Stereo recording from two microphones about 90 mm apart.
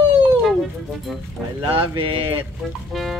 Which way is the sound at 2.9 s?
Centre (ahead or behind).